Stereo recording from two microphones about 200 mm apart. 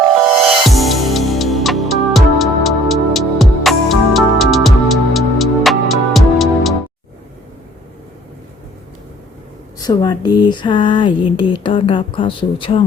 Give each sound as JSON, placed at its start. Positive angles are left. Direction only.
{"t": 0.7, "sound": "music", "side_deg": 0}
{"t": 9.7, "sound": "speech", "side_deg": 20}